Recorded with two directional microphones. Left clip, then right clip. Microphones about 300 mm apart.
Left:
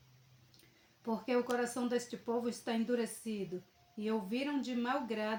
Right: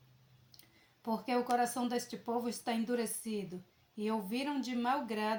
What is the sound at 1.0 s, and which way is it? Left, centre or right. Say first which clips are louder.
Speech: even; right.